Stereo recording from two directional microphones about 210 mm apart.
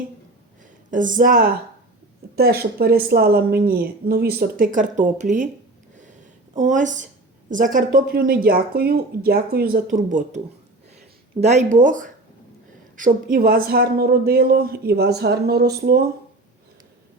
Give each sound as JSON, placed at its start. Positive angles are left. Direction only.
{"t": 0.9, "sound": "a woman's voice", "side_deg": -40}
{"t": 6.6, "sound": "a woman's voice", "side_deg": -35}
{"t": 11.4, "sound": "a woman's voice", "side_deg": -35}